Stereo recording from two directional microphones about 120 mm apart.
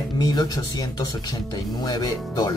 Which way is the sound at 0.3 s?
35° left (ahead or behind).